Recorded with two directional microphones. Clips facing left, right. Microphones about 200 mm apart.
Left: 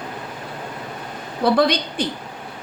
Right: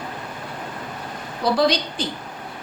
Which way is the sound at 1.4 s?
60° left (ahead or behind).